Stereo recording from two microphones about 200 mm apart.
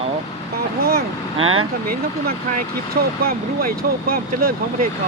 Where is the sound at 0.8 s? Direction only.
50° right (ahead or behind).